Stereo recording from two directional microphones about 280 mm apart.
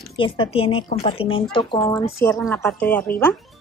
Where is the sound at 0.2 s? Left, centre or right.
Centre.